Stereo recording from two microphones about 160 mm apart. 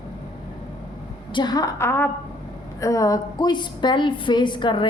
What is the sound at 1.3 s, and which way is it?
A woman's voice, 25° left (ahead or behind).